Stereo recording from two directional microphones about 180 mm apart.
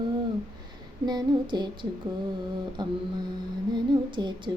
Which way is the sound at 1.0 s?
25° right (ahead or behind).